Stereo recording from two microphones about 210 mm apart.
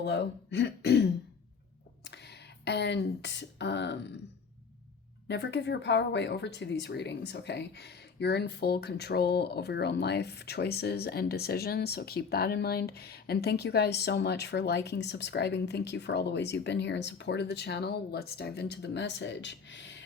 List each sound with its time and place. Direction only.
0.0 s speech: 55° left (ahead or behind)
5.3 s speech: 55° left (ahead or behind)